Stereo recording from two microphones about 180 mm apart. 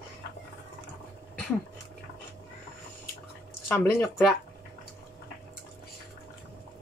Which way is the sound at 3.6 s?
15° left (ahead or behind).